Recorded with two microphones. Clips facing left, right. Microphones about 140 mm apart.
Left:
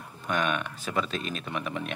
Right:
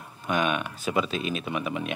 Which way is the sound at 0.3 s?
10° right (ahead or behind).